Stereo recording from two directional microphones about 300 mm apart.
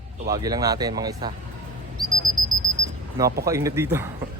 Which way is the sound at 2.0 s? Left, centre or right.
Centre.